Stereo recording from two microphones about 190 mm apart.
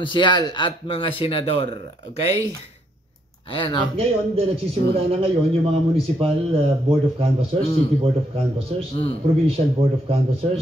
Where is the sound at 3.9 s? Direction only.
30° right (ahead or behind).